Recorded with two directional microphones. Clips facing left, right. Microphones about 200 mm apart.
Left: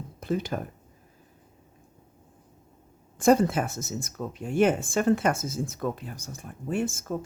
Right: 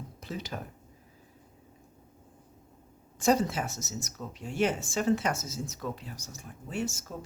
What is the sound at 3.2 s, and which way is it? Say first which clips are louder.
A woman's voice: left 6 dB; 55° left (ahead or behind).